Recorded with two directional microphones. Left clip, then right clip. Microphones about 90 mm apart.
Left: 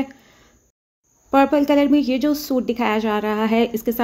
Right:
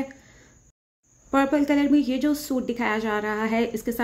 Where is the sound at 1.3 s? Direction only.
35° left (ahead or behind).